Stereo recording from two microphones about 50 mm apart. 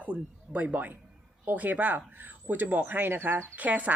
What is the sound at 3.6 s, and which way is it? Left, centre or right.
Speech, right.